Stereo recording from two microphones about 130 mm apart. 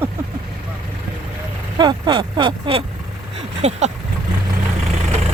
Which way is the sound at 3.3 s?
55° right (ahead or behind).